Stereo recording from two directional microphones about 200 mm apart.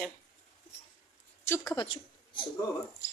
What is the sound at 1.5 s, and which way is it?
Speech, 20° left (ahead or behind).